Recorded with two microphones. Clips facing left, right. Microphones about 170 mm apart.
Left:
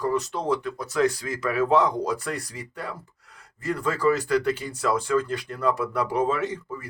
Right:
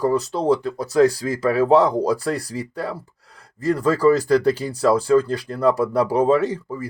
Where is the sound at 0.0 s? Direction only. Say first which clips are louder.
Right 6 dB; 35° right (ahead or behind).